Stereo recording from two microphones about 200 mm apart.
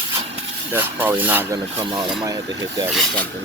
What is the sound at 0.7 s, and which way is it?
Speech, 10° right (ahead or behind).